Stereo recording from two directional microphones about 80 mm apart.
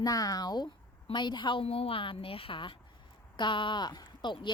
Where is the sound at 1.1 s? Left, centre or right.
Left.